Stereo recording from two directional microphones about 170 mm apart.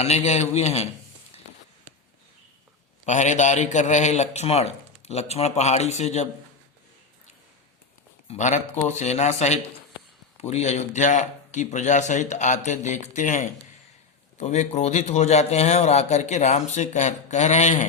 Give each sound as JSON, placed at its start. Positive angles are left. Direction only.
{"t": 0.0, "sound": "a man's voice", "side_deg": 40}
{"t": 3.1, "sound": "a man's voice", "side_deg": 45}
{"t": 8.3, "sound": "a man's voice", "side_deg": 45}